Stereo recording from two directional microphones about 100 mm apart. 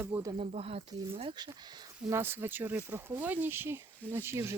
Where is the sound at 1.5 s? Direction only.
45° right (ahead or behind).